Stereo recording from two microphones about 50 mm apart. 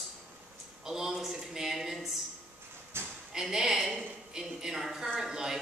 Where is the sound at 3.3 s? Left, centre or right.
Centre.